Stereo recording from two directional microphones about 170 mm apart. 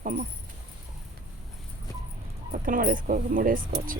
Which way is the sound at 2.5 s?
55° right (ahead or behind).